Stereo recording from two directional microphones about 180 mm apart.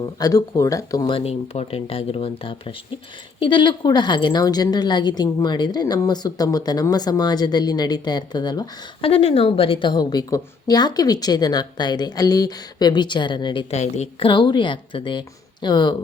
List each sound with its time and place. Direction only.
0.0 s a woman's voice: 20° left (ahead or behind)